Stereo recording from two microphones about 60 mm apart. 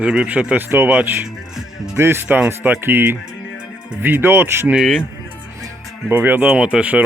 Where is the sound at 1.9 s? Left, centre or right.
Right.